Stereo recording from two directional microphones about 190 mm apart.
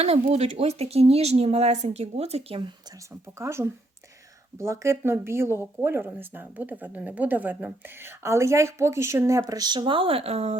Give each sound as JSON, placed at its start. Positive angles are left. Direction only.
{"t": 0.0, "sound": "speech", "side_deg": -35}
{"t": 3.3, "sound": "speech", "side_deg": -15}